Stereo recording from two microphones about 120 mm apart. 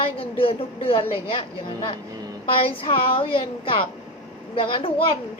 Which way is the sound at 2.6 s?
50° left (ahead or behind).